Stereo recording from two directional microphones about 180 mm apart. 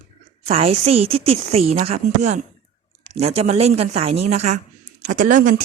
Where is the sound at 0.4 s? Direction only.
35° right (ahead or behind).